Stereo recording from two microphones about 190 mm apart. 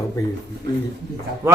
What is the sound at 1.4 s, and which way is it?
Speech, 10° right (ahead or behind).